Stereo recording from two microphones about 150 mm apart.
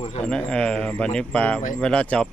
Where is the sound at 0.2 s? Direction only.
5° left (ahead or behind).